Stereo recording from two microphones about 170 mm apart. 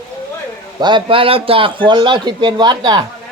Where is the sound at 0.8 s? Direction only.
25° right (ahead or behind).